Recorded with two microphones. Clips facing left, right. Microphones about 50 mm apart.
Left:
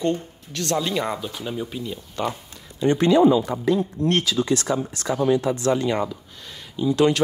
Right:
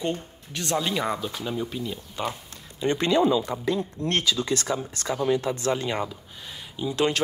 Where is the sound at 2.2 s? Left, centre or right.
Centre.